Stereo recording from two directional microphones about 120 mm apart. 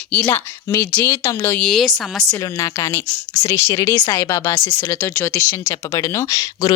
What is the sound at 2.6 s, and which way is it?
Speech, 25° left (ahead or behind).